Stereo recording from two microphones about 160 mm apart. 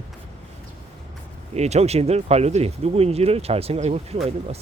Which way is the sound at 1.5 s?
45° right (ahead or behind).